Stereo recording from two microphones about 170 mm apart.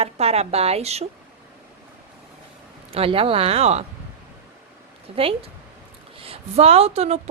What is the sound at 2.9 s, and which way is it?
Speech, 35° right (ahead or behind).